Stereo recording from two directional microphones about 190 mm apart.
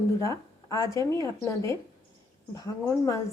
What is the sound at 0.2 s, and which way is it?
Speech, 15° left (ahead or behind).